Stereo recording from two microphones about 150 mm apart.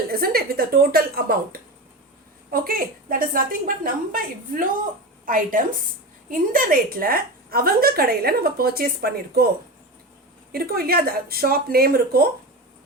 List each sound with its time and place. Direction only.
0.1 s a woman's voice: 85° right
2.5 s a woman's voice: 70° right (ahead or behind); by 9.5 s 90° right
10.5 s speech: 90° right